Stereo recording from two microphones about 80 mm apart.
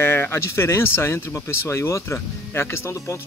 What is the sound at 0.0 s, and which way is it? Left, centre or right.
Speech, left.